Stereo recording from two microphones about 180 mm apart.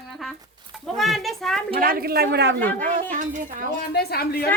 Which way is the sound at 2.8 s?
45° right (ahead or behind).